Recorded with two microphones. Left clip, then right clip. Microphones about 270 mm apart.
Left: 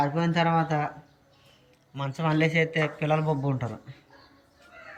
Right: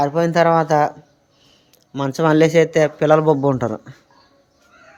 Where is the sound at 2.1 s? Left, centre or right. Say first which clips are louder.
Right 12 dB; centre.